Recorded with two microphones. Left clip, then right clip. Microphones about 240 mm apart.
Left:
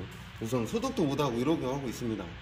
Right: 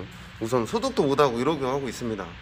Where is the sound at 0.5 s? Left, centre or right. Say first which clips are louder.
Right 7 dB; centre.